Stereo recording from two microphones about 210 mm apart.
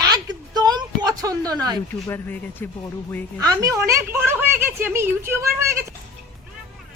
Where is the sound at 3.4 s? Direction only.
15° right (ahead or behind).